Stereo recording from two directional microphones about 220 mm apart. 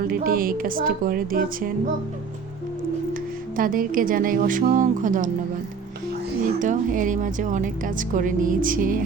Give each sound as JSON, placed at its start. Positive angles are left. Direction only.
{"t": 0.1, "sound": "speech", "side_deg": -40}
{"t": 3.5, "sound": "speech", "side_deg": -40}
{"t": 6.4, "sound": "speech", "side_deg": -35}